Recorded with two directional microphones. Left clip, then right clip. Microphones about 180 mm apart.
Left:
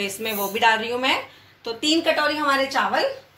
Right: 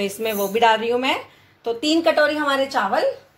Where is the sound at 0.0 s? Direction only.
50° right (ahead or behind).